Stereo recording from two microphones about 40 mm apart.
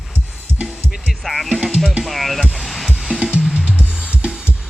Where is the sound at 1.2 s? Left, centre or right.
Centre.